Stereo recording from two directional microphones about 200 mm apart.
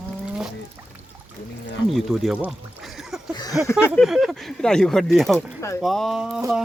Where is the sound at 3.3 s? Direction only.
20° left (ahead or behind).